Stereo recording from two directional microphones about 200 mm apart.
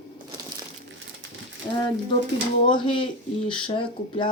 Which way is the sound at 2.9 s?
25° left (ahead or behind).